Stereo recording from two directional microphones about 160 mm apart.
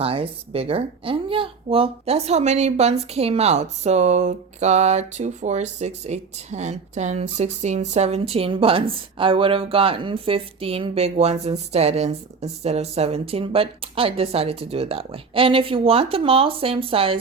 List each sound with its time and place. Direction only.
0.0 s speech: 35° right (ahead or behind)